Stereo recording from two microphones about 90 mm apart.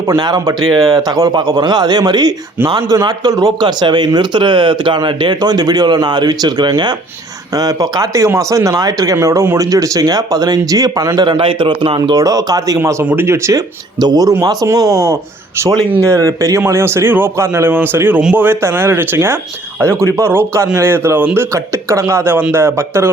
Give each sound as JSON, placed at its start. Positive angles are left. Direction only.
{"t": 0.2, "sound": "a man's voice", "side_deg": -50}
{"t": 7.5, "sound": "a man's voice", "side_deg": -40}
{"t": 11.3, "sound": "a man's voice", "side_deg": -75}
{"t": 11.9, "sound": "speech", "side_deg": -50}
{"t": 14.0, "sound": "a man's voice", "side_deg": -50}